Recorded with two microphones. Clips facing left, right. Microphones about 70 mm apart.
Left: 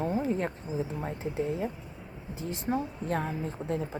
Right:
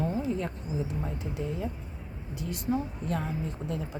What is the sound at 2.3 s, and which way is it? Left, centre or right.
Speech, left.